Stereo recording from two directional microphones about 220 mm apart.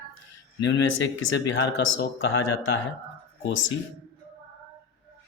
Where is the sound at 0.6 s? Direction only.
55° left (ahead or behind).